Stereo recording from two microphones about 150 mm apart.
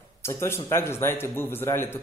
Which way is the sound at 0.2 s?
15° left (ahead or behind).